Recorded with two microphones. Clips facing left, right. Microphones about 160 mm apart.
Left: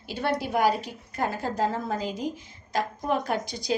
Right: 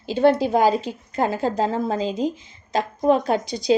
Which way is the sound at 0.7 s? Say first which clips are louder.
Right 6 dB; 25° right (ahead or behind).